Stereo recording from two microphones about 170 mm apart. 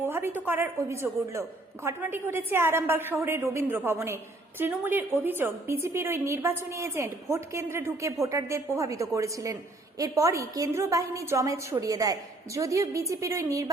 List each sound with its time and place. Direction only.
0.0 s a woman's voice: 15° right (ahead or behind)